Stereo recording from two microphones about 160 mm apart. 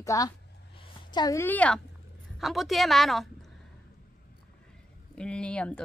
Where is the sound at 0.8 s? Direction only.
25° left (ahead or behind).